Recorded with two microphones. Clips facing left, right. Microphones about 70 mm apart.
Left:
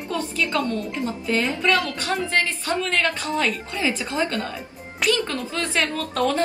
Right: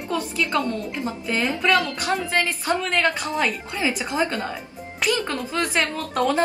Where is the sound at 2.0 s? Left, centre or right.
Right.